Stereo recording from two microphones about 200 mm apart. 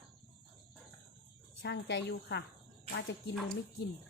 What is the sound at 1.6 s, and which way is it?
Speech, 60° left (ahead or behind).